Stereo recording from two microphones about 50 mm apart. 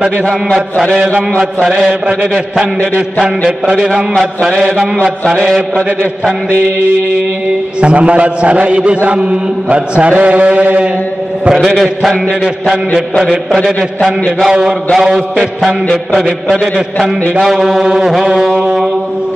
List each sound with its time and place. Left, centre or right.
4.1 s mantra: centre
7.8 s mantra: right
11.5 s mantra: centre
14.4 s a sound: centre
16.4 s mantra: centre
17.4 s a sound: centre